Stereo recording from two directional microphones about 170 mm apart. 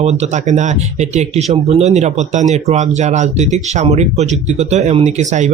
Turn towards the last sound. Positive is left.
turn(degrees=-45)  # may be behind; listen again after turning